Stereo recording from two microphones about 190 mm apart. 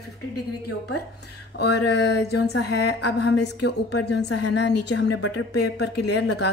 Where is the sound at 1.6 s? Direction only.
65° left (ahead or behind).